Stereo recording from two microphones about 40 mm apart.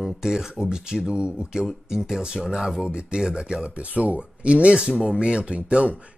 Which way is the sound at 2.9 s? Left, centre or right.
Right.